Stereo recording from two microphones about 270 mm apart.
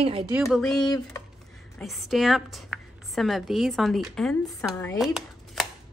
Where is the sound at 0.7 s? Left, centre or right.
Centre.